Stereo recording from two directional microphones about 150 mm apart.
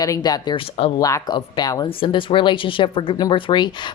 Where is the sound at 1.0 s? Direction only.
20° left (ahead or behind).